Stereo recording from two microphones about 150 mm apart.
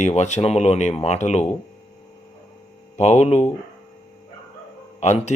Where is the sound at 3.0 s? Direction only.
50° left (ahead or behind).